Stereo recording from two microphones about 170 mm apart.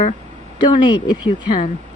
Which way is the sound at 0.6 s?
25° left (ahead or behind).